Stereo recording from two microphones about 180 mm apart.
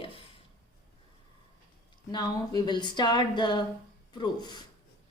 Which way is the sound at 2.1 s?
20° left (ahead or behind).